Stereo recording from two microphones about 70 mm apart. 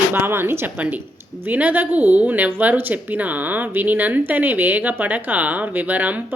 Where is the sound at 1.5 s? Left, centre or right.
Right.